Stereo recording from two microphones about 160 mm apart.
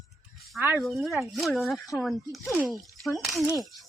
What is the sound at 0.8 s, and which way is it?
A child's voice, centre (ahead or behind).